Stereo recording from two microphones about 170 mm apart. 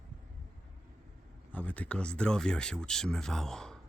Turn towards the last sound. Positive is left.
turn(degrees=5)  # may be behind; listen again after turning